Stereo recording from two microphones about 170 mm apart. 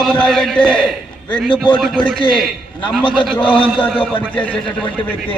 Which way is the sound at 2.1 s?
30° left (ahead or behind).